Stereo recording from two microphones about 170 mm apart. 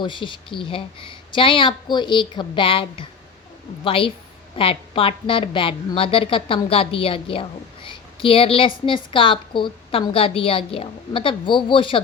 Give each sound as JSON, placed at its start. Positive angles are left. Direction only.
{"t": 0.0, "sound": "a woman's voice", "side_deg": 30}